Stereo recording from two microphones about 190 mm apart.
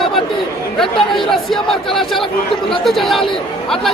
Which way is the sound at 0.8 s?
Centre (ahead or behind).